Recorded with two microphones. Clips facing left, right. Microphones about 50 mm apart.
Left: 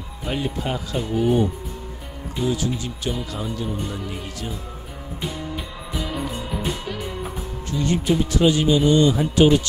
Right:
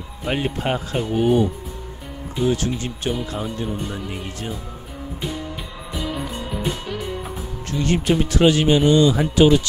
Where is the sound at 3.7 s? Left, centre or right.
Centre.